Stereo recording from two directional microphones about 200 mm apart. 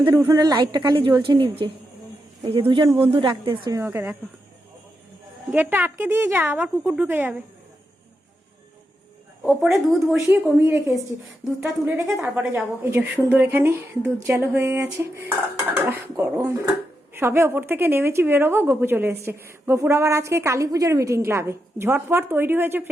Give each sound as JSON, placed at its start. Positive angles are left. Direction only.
{"t": 0.0, "sound": "speech", "side_deg": -15}
{"t": 3.8, "sound": "a woman's voice", "side_deg": -10}
{"t": 5.5, "sound": "a woman's voice", "side_deg": -10}
{"t": 9.4, "sound": "a woman's voice", "side_deg": 0}